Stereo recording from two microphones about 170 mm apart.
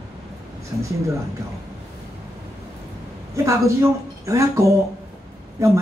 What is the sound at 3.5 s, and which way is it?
Speech, 15° right (ahead or behind).